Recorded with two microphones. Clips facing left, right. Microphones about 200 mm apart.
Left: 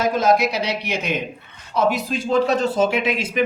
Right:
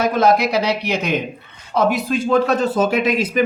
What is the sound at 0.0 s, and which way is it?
Speech, 60° right (ahead or behind).